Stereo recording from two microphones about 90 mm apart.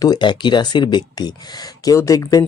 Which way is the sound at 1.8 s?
40° left (ahead or behind).